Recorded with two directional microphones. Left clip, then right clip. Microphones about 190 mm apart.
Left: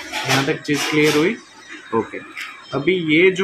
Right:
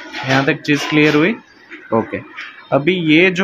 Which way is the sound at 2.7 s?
55° right (ahead or behind).